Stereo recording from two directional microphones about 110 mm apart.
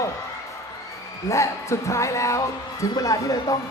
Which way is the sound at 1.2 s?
25° left (ahead or behind).